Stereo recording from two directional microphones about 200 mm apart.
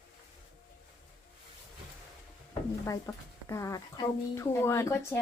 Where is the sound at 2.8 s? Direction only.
15° left (ahead or behind).